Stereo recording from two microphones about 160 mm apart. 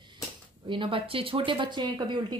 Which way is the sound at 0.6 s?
30° right (ahead or behind).